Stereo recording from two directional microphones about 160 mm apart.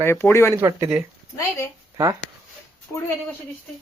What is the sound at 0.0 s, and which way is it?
Speech, 15° left (ahead or behind).